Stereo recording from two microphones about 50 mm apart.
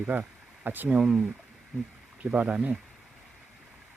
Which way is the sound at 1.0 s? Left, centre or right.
Centre.